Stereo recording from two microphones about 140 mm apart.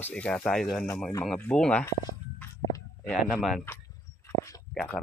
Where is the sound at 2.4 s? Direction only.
15° left (ahead or behind).